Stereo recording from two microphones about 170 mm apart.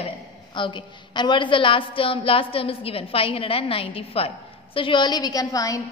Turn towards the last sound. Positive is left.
turn(degrees=20)  # may be behind; listen again after turning